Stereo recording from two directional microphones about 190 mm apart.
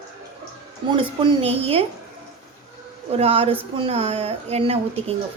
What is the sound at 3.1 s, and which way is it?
Speech, 30° right (ahead or behind).